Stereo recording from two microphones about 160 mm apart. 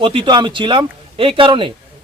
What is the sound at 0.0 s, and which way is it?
A man's voice, 30° right (ahead or behind).